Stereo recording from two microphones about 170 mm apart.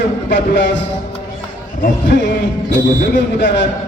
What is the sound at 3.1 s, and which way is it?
Speech, 75° left (ahead or behind).